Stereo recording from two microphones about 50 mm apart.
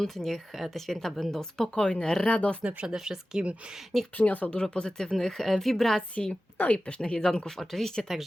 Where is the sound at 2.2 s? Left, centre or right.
Left.